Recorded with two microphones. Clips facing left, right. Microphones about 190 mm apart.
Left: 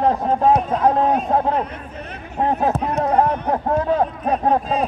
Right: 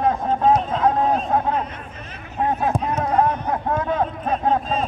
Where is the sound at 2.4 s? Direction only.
35° left (ahead or behind).